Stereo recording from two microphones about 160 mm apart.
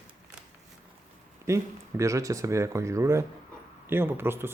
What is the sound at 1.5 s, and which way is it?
Speech, 20° right (ahead or behind).